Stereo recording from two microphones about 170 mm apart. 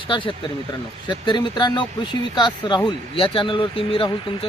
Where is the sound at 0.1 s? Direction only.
30° left (ahead or behind).